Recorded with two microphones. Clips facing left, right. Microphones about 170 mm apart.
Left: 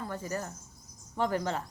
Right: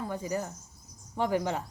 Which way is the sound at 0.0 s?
15° right (ahead or behind).